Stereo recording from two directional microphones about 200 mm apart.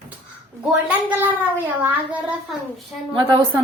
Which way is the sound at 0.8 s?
10° right (ahead or behind).